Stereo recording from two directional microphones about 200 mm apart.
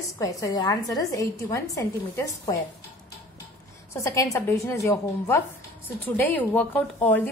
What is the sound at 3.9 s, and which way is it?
A woman's voice, 15° left (ahead or behind).